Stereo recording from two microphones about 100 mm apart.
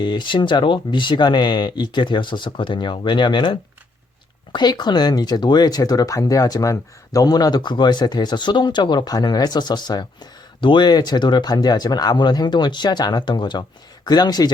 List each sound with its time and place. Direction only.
0.0 s speech: 50° left (ahead or behind)